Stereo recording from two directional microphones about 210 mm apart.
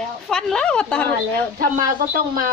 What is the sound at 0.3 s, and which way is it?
Speech, 5° left (ahead or behind).